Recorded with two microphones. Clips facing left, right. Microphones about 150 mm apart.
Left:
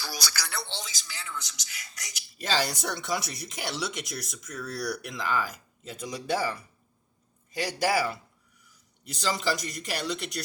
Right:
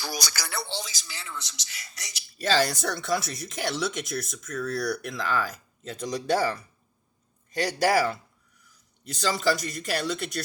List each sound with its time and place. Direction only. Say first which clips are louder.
0.0 s a sound: right 3 dB; 15° right (ahead or behind)
0.4 s speech: right 3 dB; 5° right (ahead or behind)
1.1 s a man's voice: left 1 dB; 30° right (ahead or behind)
2.5 s speech: right 4 dB; 15° left (ahead or behind)